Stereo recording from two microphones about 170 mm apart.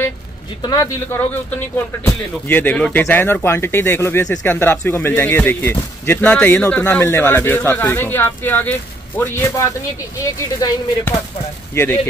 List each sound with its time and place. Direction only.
0.6 s speech: 20° left (ahead or behind)